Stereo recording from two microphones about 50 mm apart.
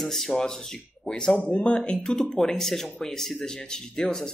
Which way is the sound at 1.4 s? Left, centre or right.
Left.